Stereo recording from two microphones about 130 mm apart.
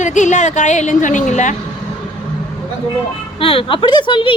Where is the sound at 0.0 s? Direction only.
70° left (ahead or behind).